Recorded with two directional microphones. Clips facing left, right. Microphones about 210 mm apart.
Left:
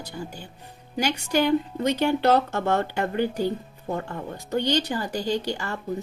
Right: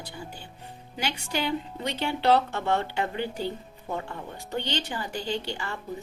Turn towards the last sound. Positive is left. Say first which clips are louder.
# left 5 dB
turn(degrees=45)  # may be behind; listen again after turning